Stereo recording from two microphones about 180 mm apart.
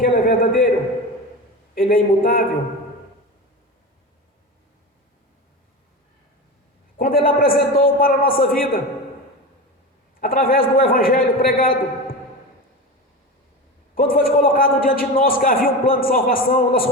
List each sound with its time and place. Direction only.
0.0 s a sound: 55° left (ahead or behind)
1.7 s a man's voice: 55° left (ahead or behind)
6.9 s a man's voice: 55° left (ahead or behind)
10.2 s a man's voice: 50° left (ahead or behind)
13.9 s a man's voice: 55° left (ahead or behind)